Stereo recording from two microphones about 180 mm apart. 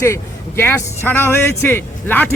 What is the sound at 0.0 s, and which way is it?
A man's voice, 15° left (ahead or behind).